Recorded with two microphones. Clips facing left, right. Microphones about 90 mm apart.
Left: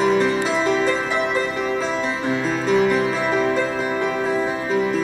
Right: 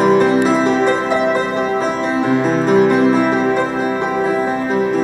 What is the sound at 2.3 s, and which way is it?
Music, 45° right (ahead or behind).